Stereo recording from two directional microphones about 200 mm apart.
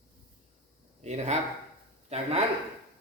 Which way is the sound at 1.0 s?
35° right (ahead or behind).